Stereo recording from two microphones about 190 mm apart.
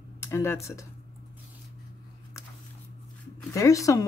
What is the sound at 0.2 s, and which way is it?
Speech, 15° left (ahead or behind).